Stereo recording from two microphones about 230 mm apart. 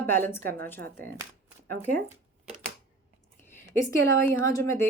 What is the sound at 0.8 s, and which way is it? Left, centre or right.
Speech, right.